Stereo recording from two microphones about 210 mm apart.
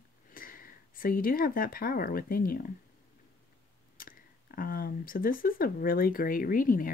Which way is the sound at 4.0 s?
40° left (ahead or behind).